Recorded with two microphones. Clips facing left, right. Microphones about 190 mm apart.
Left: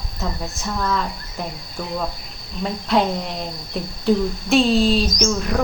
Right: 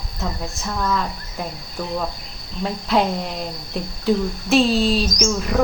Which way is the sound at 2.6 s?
Centre (ahead or behind).